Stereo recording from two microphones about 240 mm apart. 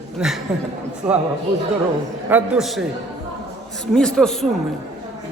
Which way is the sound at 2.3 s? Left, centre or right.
Centre.